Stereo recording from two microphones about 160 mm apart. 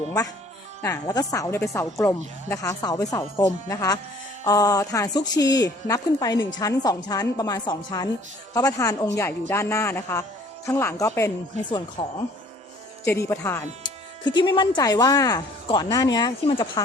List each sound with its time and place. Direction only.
0.8 s a woman's voice: 20° left (ahead or behind)
13.1 s a man's voice: 15° left (ahead or behind)
13.8 s speech: 30° left (ahead or behind)